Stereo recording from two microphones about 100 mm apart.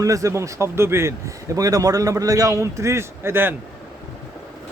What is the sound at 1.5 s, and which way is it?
Speech, 35° right (ahead or behind).